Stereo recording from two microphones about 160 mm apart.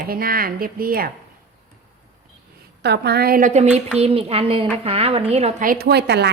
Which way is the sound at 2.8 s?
90° right.